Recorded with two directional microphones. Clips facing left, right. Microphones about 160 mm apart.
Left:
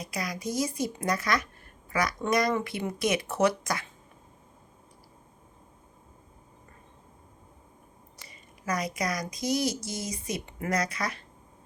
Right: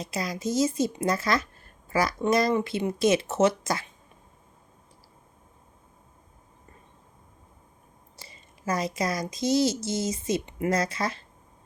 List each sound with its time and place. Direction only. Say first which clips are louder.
0.0 s speech: right 3 dB; 25° right (ahead or behind)
8.1 s a sound: right 3 dB; 30° right (ahead or behind)
9.3 s speech: right 7 dB; 25° right (ahead or behind)